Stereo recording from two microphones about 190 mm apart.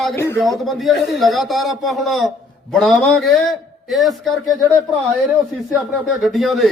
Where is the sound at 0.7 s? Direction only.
Centre (ahead or behind).